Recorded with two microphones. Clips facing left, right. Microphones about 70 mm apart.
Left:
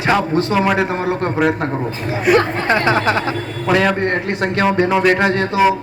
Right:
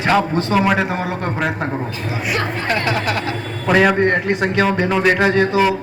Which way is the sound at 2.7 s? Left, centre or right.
Left.